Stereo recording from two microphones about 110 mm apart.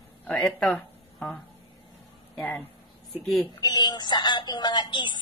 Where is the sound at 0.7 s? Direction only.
10° left (ahead or behind).